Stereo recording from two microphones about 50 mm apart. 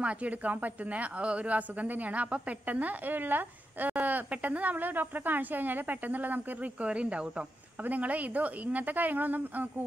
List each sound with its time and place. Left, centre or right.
0.0 s speech: right